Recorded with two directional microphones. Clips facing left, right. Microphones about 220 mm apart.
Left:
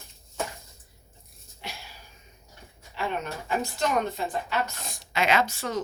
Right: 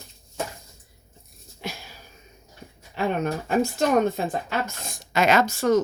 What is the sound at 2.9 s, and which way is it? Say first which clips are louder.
Speech: right 7 dB; 50° right (ahead or behind).